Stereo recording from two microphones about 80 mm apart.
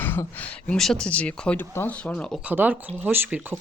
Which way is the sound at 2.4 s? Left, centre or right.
Right.